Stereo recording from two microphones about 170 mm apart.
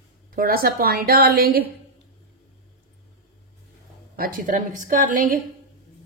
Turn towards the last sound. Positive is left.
turn(degrees=-55)  # may be behind; listen again after turning